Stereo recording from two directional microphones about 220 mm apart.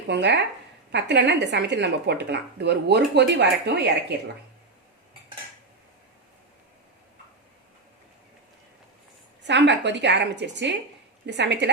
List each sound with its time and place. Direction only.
0.1 s speech: 50° right (ahead or behind)
9.4 s speech: 55° right (ahead or behind)